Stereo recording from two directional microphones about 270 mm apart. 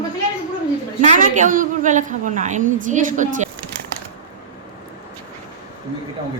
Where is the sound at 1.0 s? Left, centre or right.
Right.